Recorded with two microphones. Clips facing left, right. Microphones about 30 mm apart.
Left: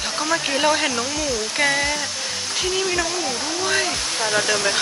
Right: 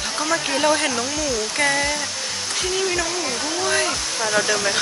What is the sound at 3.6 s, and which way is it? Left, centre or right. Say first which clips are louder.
Speech: even; centre.